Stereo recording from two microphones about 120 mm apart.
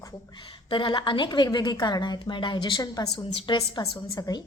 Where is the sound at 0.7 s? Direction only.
45° left (ahead or behind).